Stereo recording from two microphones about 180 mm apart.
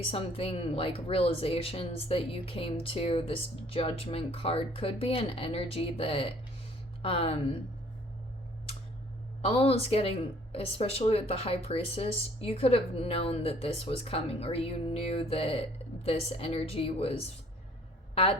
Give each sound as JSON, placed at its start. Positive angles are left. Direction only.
{"t": 0.1, "sound": "a woman's voice", "side_deg": 30}
{"t": 9.4, "sound": "a woman's voice", "side_deg": 35}